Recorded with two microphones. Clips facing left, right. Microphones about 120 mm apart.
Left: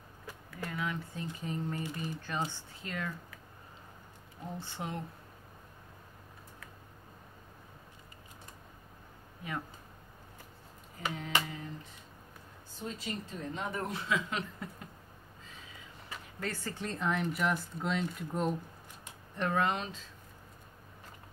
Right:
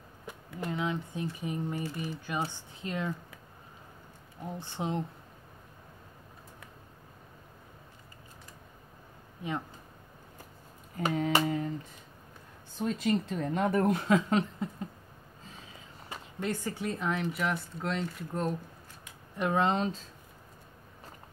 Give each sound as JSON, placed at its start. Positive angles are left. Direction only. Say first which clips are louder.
{"t": 0.3, "sound": "a sound", "louder": "right 5 dB", "side_deg": -20}
{"t": 1.4, "sound": "speech", "louder": "even", "side_deg": -15}
{"t": 4.6, "sound": "speech", "louder": "right 7 dB", "side_deg": -20}
{"t": 9.4, "sound": "speech", "louder": "right 6 dB", "side_deg": -20}
{"t": 11.0, "sound": "a sound", "louder": "right 7 dB", "side_deg": -45}
{"t": 12.7, "sound": "speech", "louder": "right 11 dB", "side_deg": -70}
{"t": 14.6, "sound": "speech", "louder": "right 8 dB", "side_deg": -25}
{"t": 16.3, "sound": "speech", "louder": "right 5 dB", "side_deg": -15}
{"t": 19.3, "sound": "speech", "louder": "right 3 dB", "side_deg": -10}
{"t": 19.6, "sound": "speech", "louder": "right 4 dB", "side_deg": -30}